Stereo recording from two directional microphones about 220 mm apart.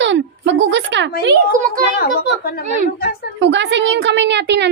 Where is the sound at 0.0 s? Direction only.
55° right (ahead or behind).